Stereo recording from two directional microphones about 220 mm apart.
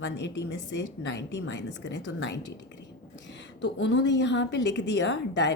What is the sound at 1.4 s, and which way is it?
A woman's voice, 55° left (ahead or behind).